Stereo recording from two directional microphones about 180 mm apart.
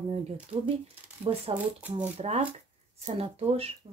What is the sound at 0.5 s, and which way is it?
Speech, 40° right (ahead or behind).